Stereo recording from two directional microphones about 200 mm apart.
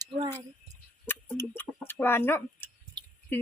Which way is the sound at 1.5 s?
10° left (ahead or behind).